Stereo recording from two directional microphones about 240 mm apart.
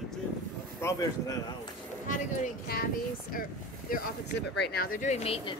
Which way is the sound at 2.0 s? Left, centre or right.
Left.